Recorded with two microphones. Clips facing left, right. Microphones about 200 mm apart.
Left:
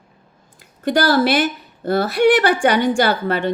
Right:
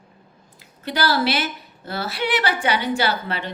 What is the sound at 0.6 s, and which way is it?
A woman's voice, 50° left (ahead or behind).